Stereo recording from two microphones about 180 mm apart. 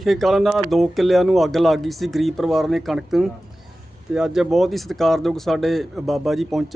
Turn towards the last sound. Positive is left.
turn(degrees=0)  # may be behind; listen again after turning